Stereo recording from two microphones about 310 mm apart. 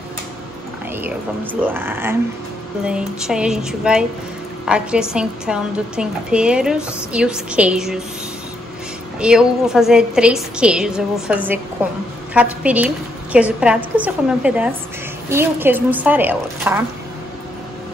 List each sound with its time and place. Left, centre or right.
1.0 s a woman's voice: centre
9.2 s a woman's voice: centre